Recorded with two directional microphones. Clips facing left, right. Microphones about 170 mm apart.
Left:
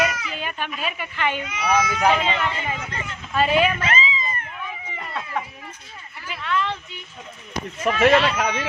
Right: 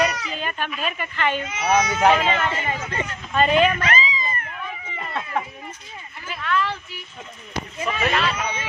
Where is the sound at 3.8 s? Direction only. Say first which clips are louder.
Right 1 dB; 25° left (ahead or behind).